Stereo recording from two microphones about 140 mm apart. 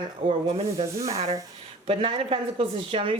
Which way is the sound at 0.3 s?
40° right (ahead or behind).